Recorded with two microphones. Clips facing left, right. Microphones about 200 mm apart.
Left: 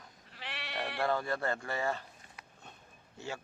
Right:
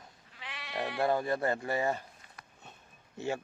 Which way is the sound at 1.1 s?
20° right (ahead or behind).